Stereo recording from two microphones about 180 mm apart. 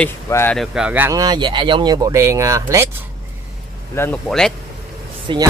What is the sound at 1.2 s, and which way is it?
Speech, 25° right (ahead or behind).